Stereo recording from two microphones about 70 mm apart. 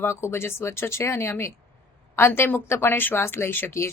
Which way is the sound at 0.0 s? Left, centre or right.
Left.